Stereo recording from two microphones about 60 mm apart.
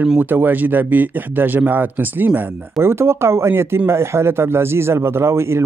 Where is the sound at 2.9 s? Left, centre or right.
Right.